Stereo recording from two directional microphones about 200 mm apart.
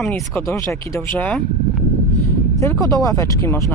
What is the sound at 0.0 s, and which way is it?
Speech, 5° left (ahead or behind).